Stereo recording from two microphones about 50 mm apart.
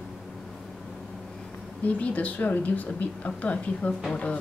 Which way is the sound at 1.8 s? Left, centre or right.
Left.